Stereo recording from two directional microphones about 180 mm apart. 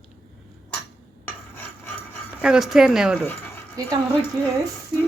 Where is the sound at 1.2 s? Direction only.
10° left (ahead or behind).